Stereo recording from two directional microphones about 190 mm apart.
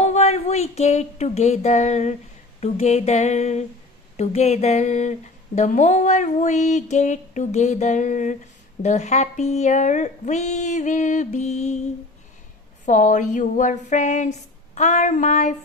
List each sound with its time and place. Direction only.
0.0 s speech: 35° left (ahead or behind)
12.8 s speech: 40° left (ahead or behind)